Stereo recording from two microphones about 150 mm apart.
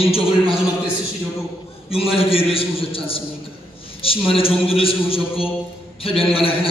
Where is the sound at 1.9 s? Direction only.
40° left (ahead or behind).